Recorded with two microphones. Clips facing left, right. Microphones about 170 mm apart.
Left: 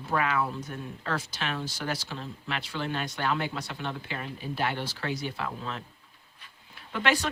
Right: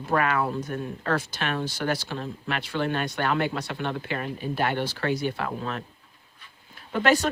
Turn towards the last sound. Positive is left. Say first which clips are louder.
# right 5 dB
turn(degrees=-45)  # may be behind; listen again after turning